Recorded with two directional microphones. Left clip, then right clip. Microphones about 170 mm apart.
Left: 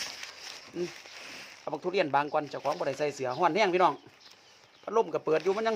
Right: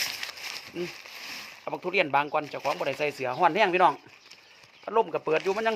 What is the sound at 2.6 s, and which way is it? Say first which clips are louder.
Speech: right 2 dB; 15° right (ahead or behind).